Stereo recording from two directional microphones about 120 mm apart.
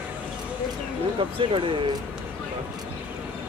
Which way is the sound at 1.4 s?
45° right (ahead or behind).